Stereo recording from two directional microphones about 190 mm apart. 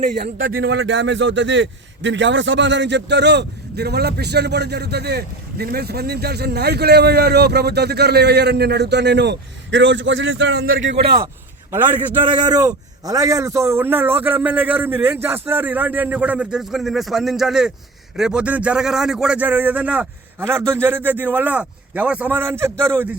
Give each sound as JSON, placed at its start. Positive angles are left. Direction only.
{"t": 0.1, "sound": "speech", "side_deg": -75}
{"t": 11.7, "sound": "a man's voice", "side_deg": -10}
{"t": 12.2, "sound": "a man's voice", "side_deg": -25}